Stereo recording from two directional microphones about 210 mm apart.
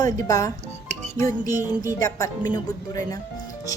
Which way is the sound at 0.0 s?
15° left (ahead or behind).